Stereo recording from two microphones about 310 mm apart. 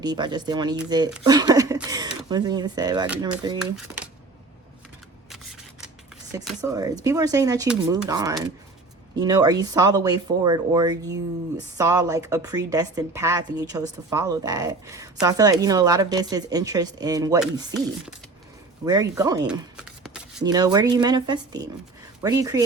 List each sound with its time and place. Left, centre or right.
0.0 s a woman's voice: centre
3.6 s speech: centre
6.6 s a woman's voice: centre
18.9 s a woman's voice: centre
19.5 s shuffling cards: centre
20.4 s a woman's voice: centre